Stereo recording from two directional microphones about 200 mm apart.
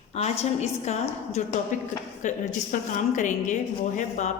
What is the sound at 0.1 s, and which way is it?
Speech, 30° left (ahead or behind).